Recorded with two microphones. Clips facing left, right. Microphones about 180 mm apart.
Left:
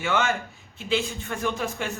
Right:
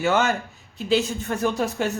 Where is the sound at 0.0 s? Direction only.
40° right (ahead or behind).